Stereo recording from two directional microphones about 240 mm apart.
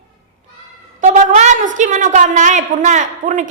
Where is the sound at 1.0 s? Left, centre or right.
Right.